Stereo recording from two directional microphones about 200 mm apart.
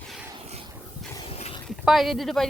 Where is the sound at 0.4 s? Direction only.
30° right (ahead or behind).